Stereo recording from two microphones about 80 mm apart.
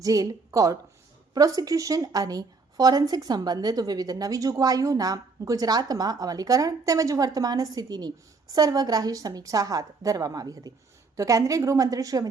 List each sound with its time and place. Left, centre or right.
0.0 s a woman's voice: right